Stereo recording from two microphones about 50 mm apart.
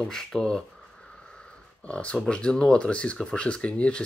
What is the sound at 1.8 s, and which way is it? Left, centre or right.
Speech, left.